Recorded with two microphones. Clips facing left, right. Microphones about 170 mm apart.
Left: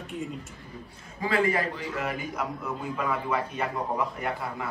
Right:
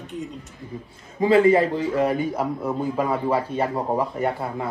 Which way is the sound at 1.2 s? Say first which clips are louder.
Right 10 dB; 25° right (ahead or behind).